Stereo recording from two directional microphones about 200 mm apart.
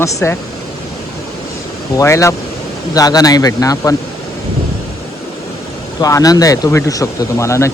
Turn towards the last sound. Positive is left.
turn(degrees=15)  # may be behind; listen again after turning